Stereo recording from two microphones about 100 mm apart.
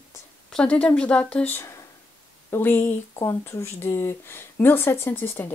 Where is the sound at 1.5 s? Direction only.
30° left (ahead or behind).